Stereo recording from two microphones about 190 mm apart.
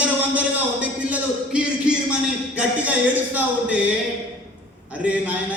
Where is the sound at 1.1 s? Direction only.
5° right (ahead or behind).